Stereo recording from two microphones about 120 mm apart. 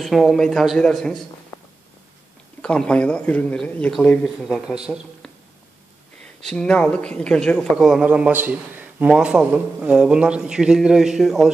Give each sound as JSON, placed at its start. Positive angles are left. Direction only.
{"t": 0.0, "sound": "speech", "side_deg": 0}
{"t": 2.6, "sound": "speech", "side_deg": 10}
{"t": 6.4, "sound": "speech", "side_deg": 5}
{"t": 7.8, "sound": "a man's voice", "side_deg": -5}